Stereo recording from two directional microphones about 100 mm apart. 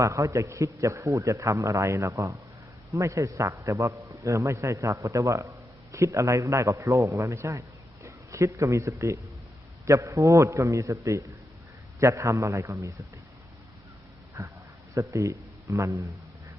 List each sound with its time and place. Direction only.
0.0 s a man's voice: 30° right (ahead or behind)
14.4 s a man's voice: 35° right (ahead or behind)